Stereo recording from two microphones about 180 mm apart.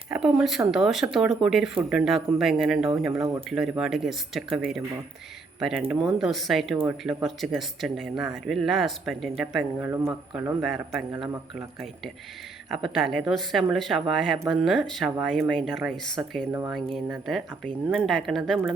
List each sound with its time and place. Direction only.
0.1 s speech: centre (ahead or behind)
9.8 s speech: 15° right (ahead or behind)
10.3 s speech: centre (ahead or behind)
12.7 s speech: centre (ahead or behind)
16.5 s speech: 15° right (ahead or behind)
16.7 s speech: centre (ahead or behind)